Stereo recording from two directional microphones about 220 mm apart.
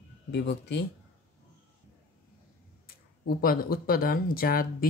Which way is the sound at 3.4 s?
40° left (ahead or behind).